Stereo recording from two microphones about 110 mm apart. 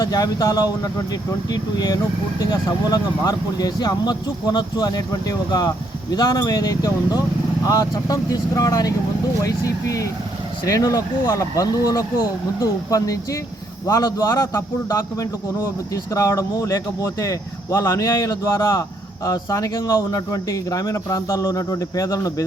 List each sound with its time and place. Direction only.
0.0 s speech: 35° left (ahead or behind)